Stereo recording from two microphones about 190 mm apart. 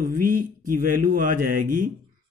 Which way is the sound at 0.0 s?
45° right (ahead or behind).